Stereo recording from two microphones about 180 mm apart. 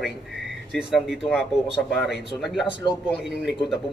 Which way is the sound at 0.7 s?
5° right (ahead or behind).